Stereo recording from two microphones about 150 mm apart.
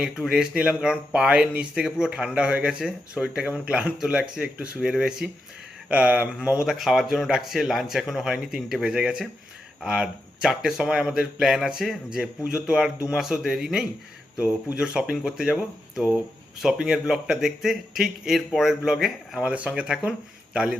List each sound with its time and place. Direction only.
0.0 s speech: 5° right (ahead or behind)